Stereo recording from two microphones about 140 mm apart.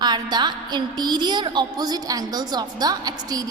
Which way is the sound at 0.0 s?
30° right (ahead or behind).